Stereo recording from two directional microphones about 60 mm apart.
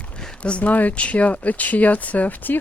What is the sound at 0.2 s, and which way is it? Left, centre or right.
Speech, centre.